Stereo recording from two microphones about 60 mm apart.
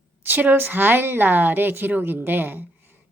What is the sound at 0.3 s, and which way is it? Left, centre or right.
A woman's voice, right.